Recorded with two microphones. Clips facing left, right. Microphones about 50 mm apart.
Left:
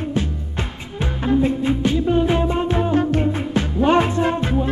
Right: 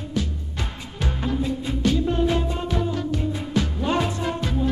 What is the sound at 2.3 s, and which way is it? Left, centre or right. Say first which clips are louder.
Music: left 6 dB; left.